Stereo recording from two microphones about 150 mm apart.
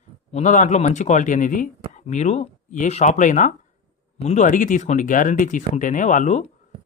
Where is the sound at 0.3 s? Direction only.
55° left (ahead or behind).